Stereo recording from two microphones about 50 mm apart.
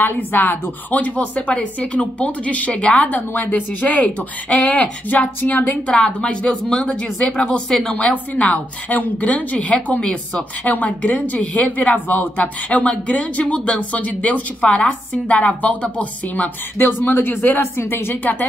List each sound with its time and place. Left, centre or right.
0.0 s speech: left
1.5 s speech: left
3.1 s speech: left
5.7 s speech: centre
10.7 s speech: left
16.7 s speech: left